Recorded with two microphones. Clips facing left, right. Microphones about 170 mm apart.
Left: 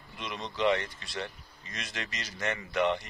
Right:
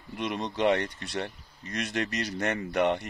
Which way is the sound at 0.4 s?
55° right (ahead or behind).